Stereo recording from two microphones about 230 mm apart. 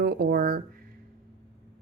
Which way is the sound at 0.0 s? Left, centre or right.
Right.